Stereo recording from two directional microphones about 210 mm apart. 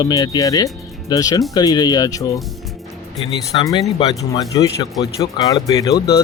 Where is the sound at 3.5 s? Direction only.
20° left (ahead or behind).